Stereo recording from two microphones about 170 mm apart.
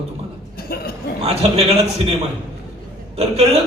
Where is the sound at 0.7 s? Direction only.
65° left (ahead or behind).